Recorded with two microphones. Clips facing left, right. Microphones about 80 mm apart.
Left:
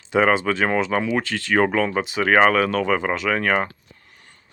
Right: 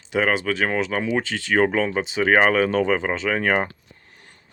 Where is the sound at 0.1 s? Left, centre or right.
Centre.